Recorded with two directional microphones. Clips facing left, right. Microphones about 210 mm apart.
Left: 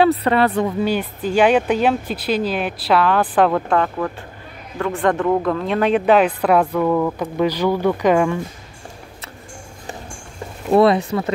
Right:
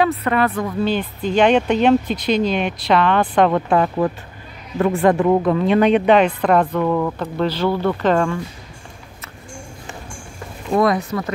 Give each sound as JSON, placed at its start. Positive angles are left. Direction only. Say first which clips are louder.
{"t": 0.0, "sound": "speech", "louder": "left 2 dB", "side_deg": 30}
{"t": 0.8, "sound": "a woman's voice", "louder": "even", "side_deg": 10}
{"t": 3.7, "sound": "a woman's voice", "louder": "right 2 dB", "side_deg": -15}
{"t": 10.7, "sound": "speech", "louder": "left 3 dB", "side_deg": 30}